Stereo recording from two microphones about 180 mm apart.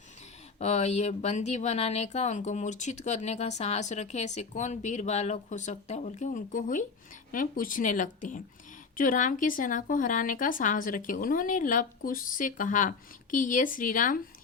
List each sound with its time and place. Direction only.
0.6 s speech: 40° left (ahead or behind)